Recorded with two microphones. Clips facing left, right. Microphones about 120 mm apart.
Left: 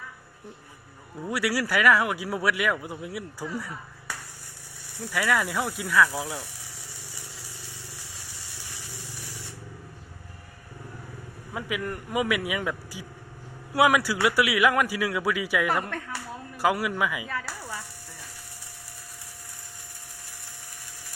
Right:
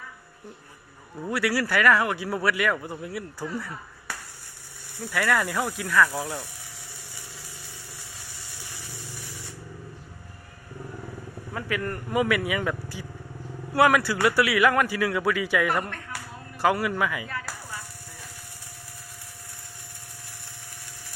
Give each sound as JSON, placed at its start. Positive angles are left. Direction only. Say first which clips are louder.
{"t": 1.3, "sound": "speech", "louder": "right 1 dB", "side_deg": 10}
{"t": 4.9, "sound": "a man's voice", "louder": "right 1 dB", "side_deg": 5}
{"t": 11.5, "sound": "a man's voice", "louder": "right 1 dB", "side_deg": 5}